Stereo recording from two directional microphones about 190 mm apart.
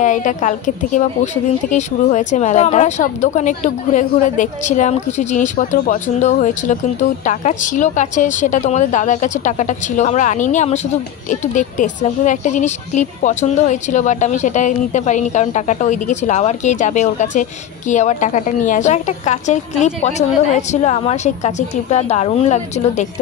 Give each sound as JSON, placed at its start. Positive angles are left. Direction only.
{"t": 0.0, "sound": "a woman's voice", "side_deg": 40}